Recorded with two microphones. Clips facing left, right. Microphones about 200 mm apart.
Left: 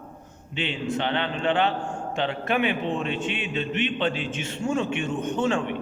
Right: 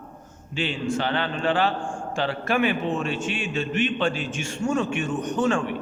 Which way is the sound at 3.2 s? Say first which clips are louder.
Right 1 dB; 45° right (ahead or behind).